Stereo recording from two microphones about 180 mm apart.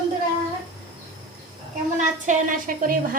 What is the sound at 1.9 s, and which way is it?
A woman's voice, 45° right (ahead or behind).